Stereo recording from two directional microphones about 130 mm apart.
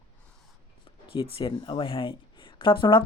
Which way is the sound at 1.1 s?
40° left (ahead or behind).